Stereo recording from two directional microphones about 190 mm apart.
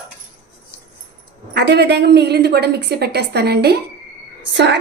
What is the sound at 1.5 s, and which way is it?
A woman's voice, 60° right (ahead or behind).